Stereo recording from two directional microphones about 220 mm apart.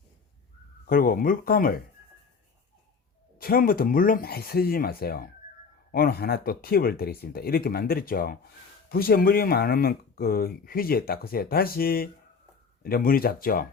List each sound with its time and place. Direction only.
0.9 s speech: 40° left (ahead or behind)
3.3 s speech: 40° left (ahead or behind)